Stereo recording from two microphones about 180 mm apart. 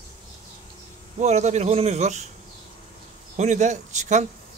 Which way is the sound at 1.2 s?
40° right (ahead or behind).